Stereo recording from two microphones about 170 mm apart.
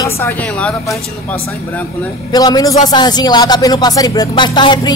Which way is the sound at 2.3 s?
25° left (ahead or behind).